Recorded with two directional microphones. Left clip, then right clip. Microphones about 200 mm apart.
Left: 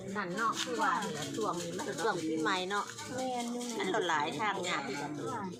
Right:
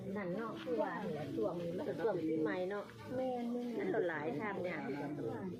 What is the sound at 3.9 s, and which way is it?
Speech, 50° left (ahead or behind).